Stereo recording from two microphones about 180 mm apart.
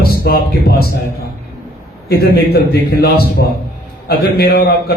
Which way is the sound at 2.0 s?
60° left (ahead or behind).